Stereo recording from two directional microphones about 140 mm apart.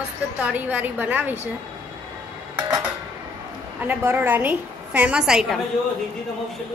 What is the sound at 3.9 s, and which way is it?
A woman's voice, 15° right (ahead or behind).